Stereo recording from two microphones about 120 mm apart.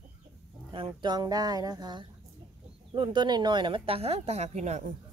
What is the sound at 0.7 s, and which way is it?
Speech, 45° right (ahead or behind).